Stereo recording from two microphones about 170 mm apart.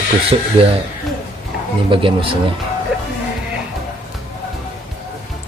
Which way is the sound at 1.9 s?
30° right (ahead or behind).